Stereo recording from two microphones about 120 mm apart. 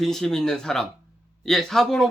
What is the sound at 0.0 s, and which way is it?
Music, 5° left (ahead or behind).